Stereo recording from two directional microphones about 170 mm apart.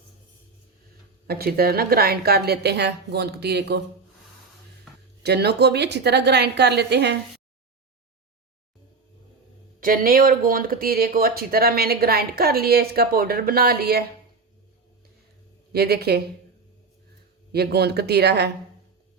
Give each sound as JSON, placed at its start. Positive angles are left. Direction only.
{"t": 1.3, "sound": "a woman's voice", "side_deg": -65}
{"t": 5.2, "sound": "a woman's voice", "side_deg": -75}
{"t": 9.8, "sound": "speech", "side_deg": -55}
{"t": 15.7, "sound": "a woman's voice", "side_deg": -70}
{"t": 17.5, "sound": "a woman's voice", "side_deg": -70}